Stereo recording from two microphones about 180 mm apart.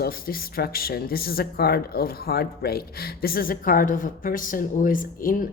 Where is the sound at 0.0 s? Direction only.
55° left (ahead or behind).